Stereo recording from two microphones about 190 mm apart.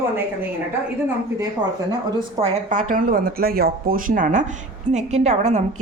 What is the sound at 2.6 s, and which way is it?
A woman's voice, 45° right (ahead or behind).